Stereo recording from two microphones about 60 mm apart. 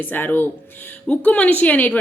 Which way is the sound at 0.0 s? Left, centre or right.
Left.